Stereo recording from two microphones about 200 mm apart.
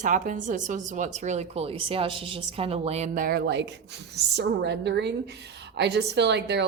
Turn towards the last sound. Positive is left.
turn(degrees=-60)  # may be behind; listen again after turning